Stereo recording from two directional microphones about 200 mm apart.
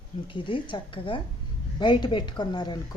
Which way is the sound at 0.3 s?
25° left (ahead or behind).